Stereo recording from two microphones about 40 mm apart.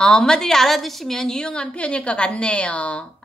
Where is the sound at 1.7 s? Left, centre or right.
Left.